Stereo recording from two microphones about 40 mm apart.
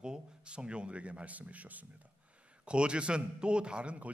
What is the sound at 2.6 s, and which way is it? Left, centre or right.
A man's voice, right.